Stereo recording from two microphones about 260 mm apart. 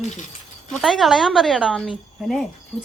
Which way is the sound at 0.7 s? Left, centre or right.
Centre.